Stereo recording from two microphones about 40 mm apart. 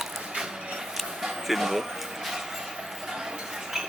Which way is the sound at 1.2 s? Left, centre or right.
Centre.